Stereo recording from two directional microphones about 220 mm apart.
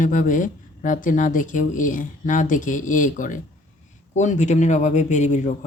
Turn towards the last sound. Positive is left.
turn(degrees=35)  # may be behind; listen again after turning